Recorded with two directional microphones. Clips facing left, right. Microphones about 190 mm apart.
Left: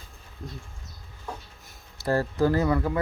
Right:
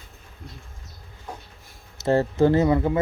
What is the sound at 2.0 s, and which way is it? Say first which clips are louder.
Speech: right 5 dB; 25° right (ahead or behind).